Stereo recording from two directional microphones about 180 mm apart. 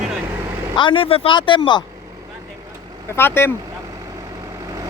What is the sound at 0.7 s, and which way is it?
Speech, 30° left (ahead or behind).